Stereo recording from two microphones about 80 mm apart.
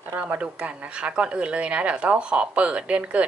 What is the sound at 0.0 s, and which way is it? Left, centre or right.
Speech, right.